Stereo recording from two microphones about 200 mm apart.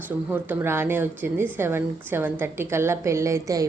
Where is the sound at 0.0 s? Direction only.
10° right (ahead or behind).